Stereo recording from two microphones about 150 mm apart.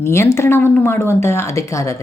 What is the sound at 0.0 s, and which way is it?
Speech, 15° left (ahead or behind).